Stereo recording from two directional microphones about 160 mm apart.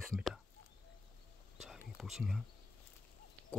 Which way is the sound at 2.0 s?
Centre (ahead or behind).